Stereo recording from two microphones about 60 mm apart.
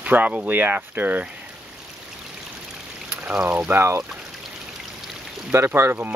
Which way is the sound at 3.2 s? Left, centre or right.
Right.